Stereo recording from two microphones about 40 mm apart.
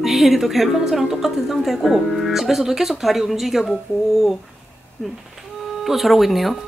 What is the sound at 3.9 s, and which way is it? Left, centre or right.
Speech, left.